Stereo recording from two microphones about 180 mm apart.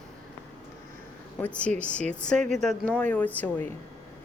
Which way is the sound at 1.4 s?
5° left (ahead or behind).